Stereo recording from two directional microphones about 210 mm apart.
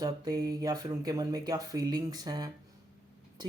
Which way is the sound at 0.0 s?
15° right (ahead or behind).